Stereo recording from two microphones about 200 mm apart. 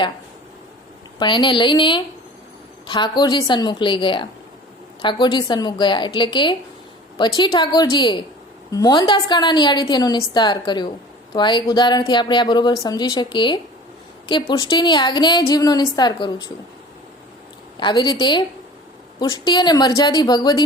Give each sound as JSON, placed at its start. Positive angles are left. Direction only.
{"t": 1.2, "sound": "a woman's voice", "side_deg": 25}
{"t": 17.7, "sound": "a woman's voice", "side_deg": 25}